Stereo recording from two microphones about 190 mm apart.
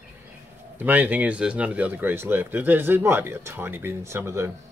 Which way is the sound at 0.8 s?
10° right (ahead or behind).